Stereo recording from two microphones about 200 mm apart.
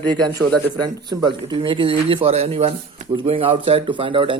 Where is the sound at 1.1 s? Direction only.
20° right (ahead or behind).